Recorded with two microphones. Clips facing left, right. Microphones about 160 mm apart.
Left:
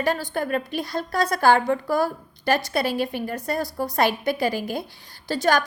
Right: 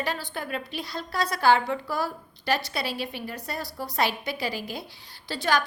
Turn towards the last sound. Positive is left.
turn(degrees=45)  # may be behind; listen again after turning